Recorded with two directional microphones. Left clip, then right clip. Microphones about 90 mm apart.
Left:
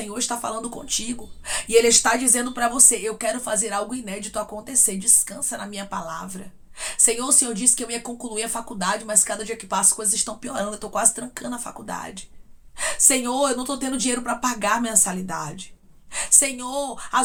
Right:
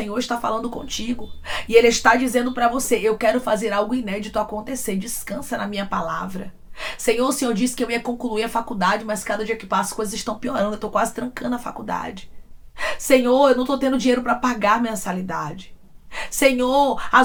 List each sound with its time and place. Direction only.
0.0 s speech: 35° left (ahead or behind)